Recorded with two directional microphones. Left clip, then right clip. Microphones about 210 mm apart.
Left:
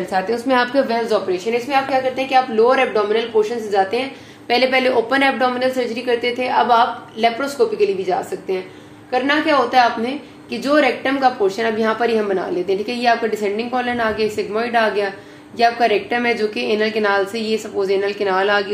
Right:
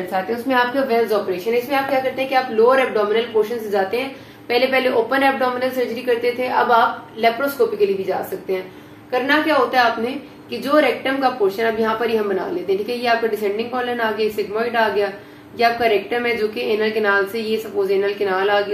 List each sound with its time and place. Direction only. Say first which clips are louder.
0.5 s a woman's voice: even; 45° left (ahead or behind)
9.1 s a woman's voice: left 1 dB; 40° left (ahead or behind)